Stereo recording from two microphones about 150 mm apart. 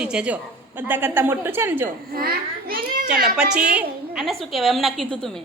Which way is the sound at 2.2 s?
85° right.